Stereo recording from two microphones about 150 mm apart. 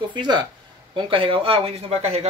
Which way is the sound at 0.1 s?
30° right (ahead or behind).